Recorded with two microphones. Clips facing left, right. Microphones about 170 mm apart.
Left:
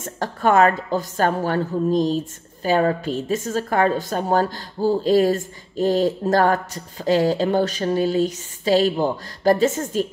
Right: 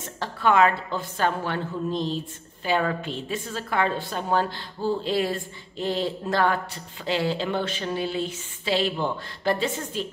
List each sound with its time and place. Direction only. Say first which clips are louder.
0.0 s a woman's voice: left 4 dB; 45° left (ahead or behind)